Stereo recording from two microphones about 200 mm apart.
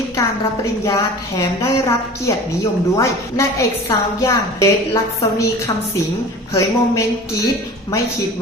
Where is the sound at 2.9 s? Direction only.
15° left (ahead or behind).